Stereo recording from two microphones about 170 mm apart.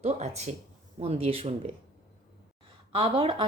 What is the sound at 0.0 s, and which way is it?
Speech, 40° right (ahead or behind).